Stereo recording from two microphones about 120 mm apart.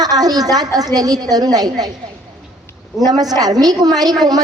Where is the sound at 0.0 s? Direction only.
35° right (ahead or behind).